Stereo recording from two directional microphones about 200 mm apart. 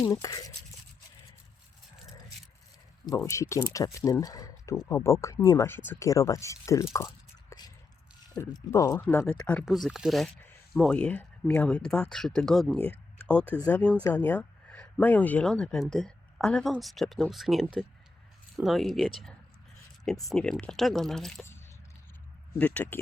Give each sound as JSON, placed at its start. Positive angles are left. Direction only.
{"t": 0.0, "sound": "speech", "side_deg": 15}
{"t": 3.1, "sound": "speech", "side_deg": 15}
{"t": 7.5, "sound": "whispering", "side_deg": 15}
{"t": 8.4, "sound": "speech", "side_deg": 15}
{"t": 20.3, "sound": "speech", "side_deg": 5}
{"t": 22.5, "sound": "speech", "side_deg": 5}